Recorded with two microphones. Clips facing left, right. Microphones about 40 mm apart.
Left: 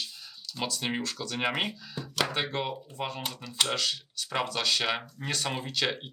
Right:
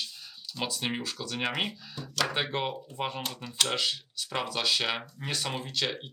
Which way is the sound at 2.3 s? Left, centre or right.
Centre.